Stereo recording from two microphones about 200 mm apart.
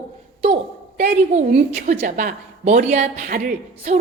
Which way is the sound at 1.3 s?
35° right (ahead or behind).